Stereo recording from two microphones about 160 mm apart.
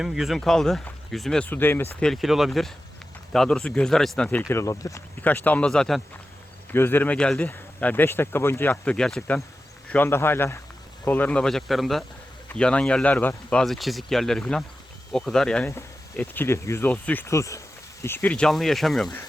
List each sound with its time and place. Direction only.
0.0 s speech: centre (ahead or behind)